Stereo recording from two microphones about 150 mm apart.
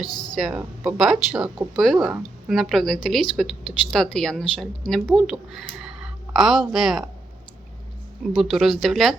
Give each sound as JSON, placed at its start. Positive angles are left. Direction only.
{"t": 0.0, "sound": "speech", "side_deg": 25}
{"t": 0.3, "sound": "speech", "side_deg": -5}
{"t": 8.4, "sound": "speech", "side_deg": 0}